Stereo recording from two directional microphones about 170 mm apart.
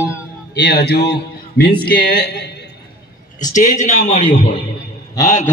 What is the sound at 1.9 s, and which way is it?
Speech, 65° left (ahead or behind).